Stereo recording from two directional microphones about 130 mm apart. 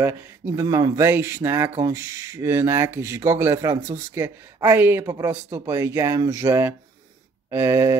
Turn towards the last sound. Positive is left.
turn(degrees=-20)  # may be behind; listen again after turning